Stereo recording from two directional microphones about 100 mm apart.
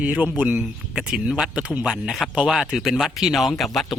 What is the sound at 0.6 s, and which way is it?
Speech, 5° right (ahead or behind).